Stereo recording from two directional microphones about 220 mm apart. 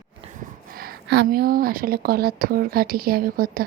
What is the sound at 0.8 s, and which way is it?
A woman's voice, 50° right (ahead or behind).